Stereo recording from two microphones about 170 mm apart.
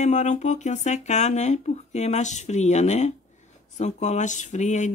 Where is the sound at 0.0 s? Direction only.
45° left (ahead or behind).